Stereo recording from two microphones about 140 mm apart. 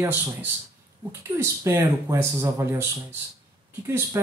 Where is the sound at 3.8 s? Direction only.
15° right (ahead or behind).